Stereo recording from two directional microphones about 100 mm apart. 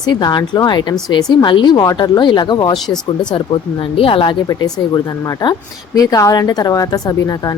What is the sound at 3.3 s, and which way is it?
Speech, 60° left (ahead or behind).